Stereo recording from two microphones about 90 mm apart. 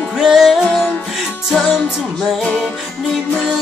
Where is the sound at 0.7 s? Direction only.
10° left (ahead or behind).